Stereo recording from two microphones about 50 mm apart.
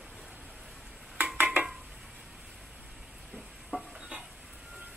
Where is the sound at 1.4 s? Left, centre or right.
Right.